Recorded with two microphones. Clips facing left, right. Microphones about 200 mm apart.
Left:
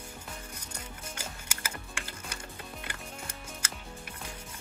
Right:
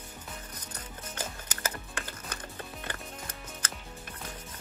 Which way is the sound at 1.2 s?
10° left (ahead or behind).